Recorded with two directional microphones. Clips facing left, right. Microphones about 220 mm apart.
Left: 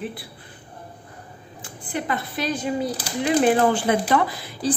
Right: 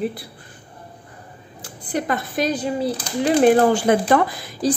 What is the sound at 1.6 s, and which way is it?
Speech, 40° right (ahead or behind).